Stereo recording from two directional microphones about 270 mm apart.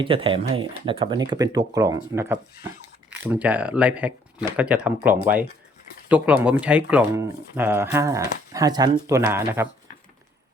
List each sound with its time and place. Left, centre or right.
0.0 s speech: centre